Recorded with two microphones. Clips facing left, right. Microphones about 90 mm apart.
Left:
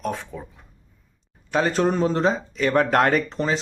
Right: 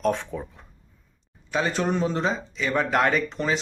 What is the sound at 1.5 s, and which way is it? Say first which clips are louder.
Speech: left 4 dB; 45° left (ahead or behind).